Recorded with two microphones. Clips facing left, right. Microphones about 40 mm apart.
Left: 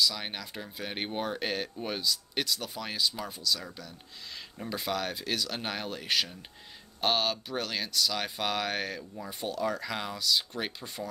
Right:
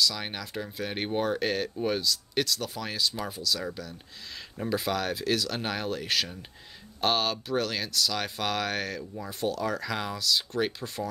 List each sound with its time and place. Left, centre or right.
0.0 s speech: centre
4.6 s speech: centre